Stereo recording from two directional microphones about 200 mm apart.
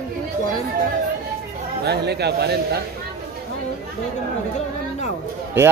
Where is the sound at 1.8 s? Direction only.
55° right (ahead or behind).